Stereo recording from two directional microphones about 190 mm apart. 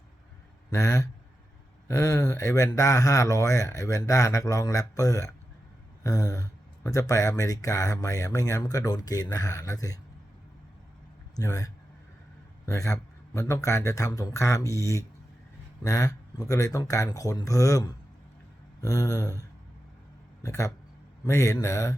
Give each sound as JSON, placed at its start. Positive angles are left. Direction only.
{"t": 0.7, "sound": "speech", "side_deg": 15}
{"t": 11.3, "sound": "speech", "side_deg": 20}